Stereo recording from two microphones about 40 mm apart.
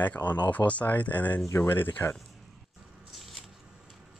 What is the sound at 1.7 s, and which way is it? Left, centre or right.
Speech, left.